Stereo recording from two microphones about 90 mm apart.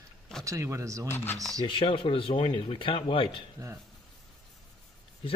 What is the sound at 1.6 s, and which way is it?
Speech, 75° left (ahead or behind).